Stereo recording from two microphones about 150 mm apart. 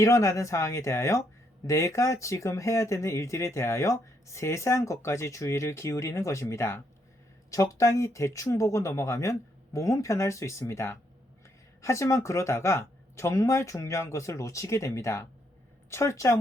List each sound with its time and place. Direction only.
0.0 s speech: 20° left (ahead or behind)